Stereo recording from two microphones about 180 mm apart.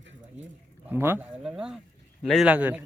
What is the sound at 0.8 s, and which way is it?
A man's voice, 10° right (ahead or behind).